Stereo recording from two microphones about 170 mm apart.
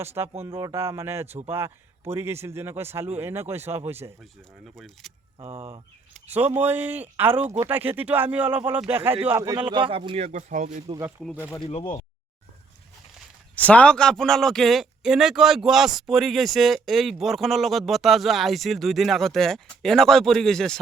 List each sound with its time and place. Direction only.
0.0 s a man's voice: 15° right (ahead or behind)
4.2 s speech: centre (ahead or behind)
5.5 s speech: 30° right (ahead or behind)
6.2 s a man's voice: 10° right (ahead or behind); by 10.8 s 50° right (ahead or behind)
13.6 s speech: 10° left (ahead or behind)